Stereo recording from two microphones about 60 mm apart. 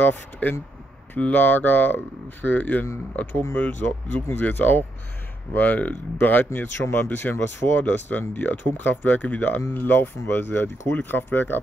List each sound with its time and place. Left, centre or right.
0.0 s speech: left
3.8 s speech: left